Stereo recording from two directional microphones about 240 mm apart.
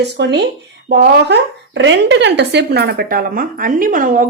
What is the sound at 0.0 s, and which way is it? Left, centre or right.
A woman's voice, right.